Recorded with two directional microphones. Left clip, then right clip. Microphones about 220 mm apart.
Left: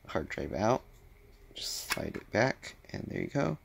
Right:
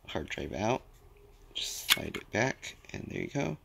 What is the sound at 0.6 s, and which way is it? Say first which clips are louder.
Speech: left 3 dB; 5° left (ahead or behind).